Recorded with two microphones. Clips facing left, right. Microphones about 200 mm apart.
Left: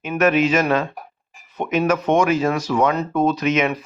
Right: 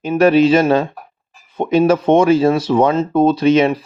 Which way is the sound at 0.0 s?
30° right (ahead or behind).